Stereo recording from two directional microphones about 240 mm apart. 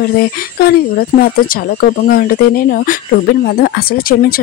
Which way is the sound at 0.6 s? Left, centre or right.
Left.